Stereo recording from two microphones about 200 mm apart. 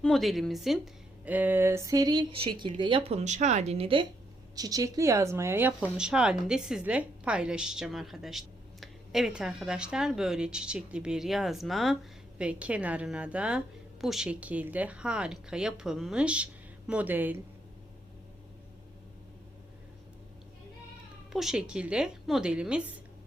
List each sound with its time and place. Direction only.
0.0 s speech: centre (ahead or behind); by 4.0 s 30° right (ahead or behind)
4.5 s speech: 20° right (ahead or behind)
21.3 s speech: 5° right (ahead or behind)